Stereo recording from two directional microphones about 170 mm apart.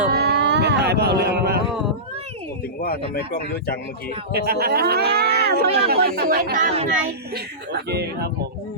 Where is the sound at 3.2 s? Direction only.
60° left (ahead or behind).